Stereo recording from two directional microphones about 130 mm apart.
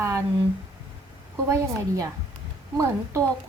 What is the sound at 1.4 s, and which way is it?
A woman's voice, 25° right (ahead or behind).